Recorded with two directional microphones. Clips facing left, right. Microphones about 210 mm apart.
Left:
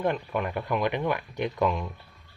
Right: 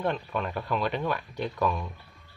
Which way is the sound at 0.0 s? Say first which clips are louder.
Left 2 dB; 15° left (ahead or behind).